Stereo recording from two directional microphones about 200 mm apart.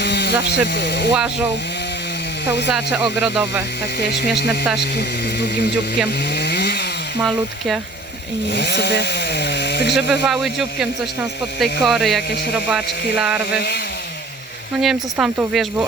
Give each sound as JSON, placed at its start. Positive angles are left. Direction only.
{"t": 0.0, "sound": "a sound", "side_deg": 55}
{"t": 0.4, "sound": "speech", "side_deg": 60}
{"t": 2.7, "sound": "speech", "side_deg": -5}
{"t": 4.8, "sound": "speech", "side_deg": 55}
{"t": 6.3, "sound": "vehicle", "side_deg": 55}
{"t": 7.2, "sound": "speech", "side_deg": -5}
{"t": 8.5, "sound": "speech", "side_deg": 55}
{"t": 9.9, "sound": "speech", "side_deg": 0}
{"t": 14.8, "sound": "speech", "side_deg": 0}